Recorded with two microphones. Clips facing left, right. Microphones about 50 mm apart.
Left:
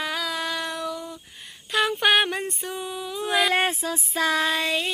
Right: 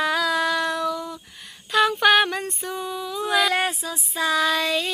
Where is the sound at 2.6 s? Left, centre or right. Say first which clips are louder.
Right 2 dB; centre.